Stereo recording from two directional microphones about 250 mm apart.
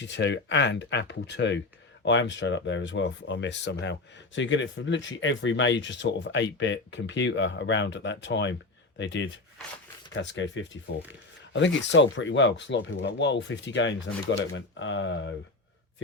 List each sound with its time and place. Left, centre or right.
0.0 s speech: left